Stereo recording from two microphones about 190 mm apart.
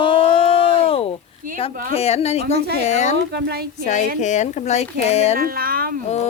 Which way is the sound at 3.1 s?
60° right (ahead or behind).